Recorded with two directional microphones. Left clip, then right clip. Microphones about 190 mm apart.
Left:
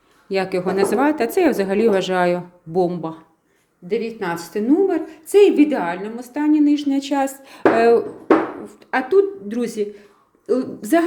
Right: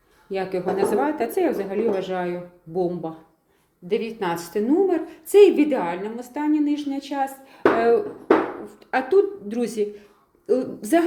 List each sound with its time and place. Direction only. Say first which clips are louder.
0.3 s a woman's voice: left 4 dB; 25° left (ahead or behind)
3.8 s a woman's voice: left 2 dB; 5° left (ahead or behind); by 8.0 s 30° left (ahead or behind)
8.6 s a woman's voice: left 2 dB; 15° left (ahead or behind)